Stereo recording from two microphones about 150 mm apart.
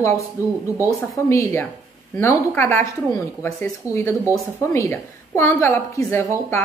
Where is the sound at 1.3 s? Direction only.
15° left (ahead or behind).